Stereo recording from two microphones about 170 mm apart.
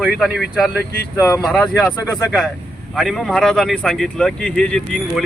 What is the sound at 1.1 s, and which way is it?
Speech, 20° left (ahead or behind).